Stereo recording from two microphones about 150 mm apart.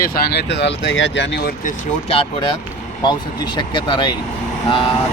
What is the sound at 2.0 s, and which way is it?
Speech, 40° left (ahead or behind).